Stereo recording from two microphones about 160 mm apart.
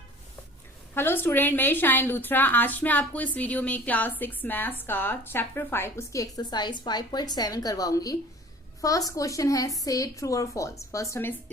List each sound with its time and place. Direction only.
0.9 s a woman's voice: 15° left (ahead or behind)